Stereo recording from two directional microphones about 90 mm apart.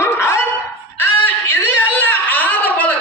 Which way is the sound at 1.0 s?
25° left (ahead or behind).